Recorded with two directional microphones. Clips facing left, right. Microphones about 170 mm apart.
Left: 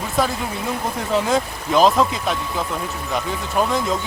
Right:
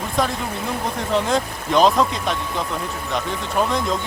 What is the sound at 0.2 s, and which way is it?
Speech, 5° left (ahead or behind).